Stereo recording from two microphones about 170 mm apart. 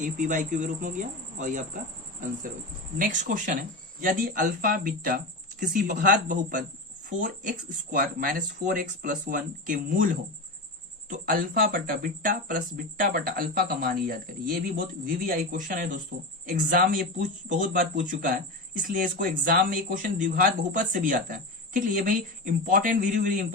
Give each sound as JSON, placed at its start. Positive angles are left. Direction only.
{"t": 0.0, "sound": "speech", "side_deg": -50}
{"t": 3.0, "sound": "speech", "side_deg": -50}